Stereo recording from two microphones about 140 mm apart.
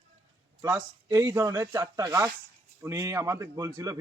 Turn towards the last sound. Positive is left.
turn(degrees=-25)  # may be behind; listen again after turning